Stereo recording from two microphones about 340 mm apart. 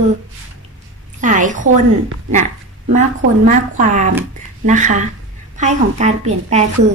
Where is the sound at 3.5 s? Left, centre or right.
Right.